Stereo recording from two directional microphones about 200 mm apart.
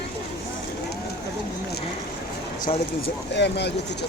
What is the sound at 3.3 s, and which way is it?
Speech, 60° left (ahead or behind).